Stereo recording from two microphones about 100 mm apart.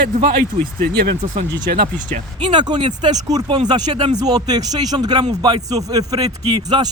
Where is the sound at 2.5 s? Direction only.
50° right (ahead or behind).